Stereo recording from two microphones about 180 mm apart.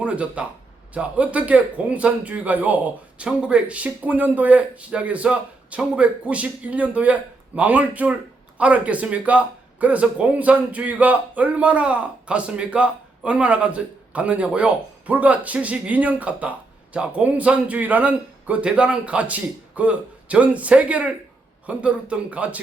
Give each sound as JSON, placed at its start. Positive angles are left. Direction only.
{"t": 0.0, "sound": "a man's voice", "side_deg": -5}